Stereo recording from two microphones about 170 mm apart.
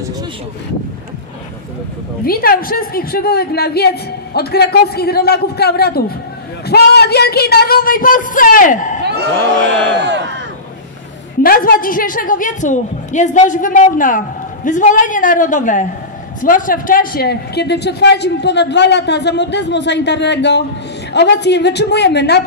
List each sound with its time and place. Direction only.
2.2 s a woman's voice: 60° left (ahead or behind)
9.8 s speech: 90° right
11.4 s a woman's voice: 60° left (ahead or behind); by 22.4 s 80° left